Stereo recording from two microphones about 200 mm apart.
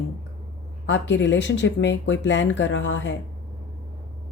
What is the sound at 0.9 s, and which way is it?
Speech, 65° left (ahead or behind).